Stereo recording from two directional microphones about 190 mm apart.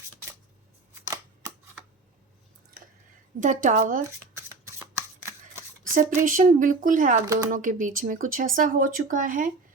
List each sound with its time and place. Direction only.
1.0 s a sound: 15° right (ahead or behind)
3.4 s speech: 40° right (ahead or behind)
4.9 s shuffling cards: 15° right (ahead or behind)
5.9 s speech: 45° right (ahead or behind)